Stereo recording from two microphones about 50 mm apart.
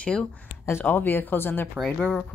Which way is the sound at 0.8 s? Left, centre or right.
Left.